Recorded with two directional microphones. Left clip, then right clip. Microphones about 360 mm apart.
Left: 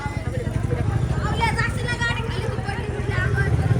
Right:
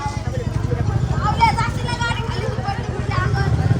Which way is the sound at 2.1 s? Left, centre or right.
Right.